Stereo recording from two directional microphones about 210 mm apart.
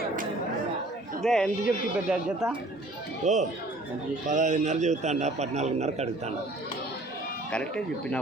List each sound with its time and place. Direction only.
1.2 s speech: centre (ahead or behind)
3.2 s a man's voice: 35° right (ahead or behind)
7.5 s speech: 5° left (ahead or behind)